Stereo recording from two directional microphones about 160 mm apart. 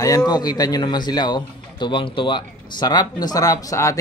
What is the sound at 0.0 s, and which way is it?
A man's voice, 20° left (ahead or behind).